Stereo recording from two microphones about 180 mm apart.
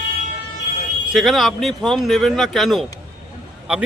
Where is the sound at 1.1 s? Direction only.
Centre (ahead or behind).